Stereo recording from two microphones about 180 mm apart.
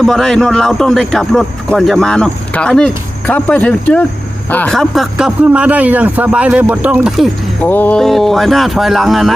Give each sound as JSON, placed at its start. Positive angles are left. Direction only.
{"t": 0.0, "sound": "speech", "side_deg": 5}
{"t": 7.6, "sound": "speech", "side_deg": 10}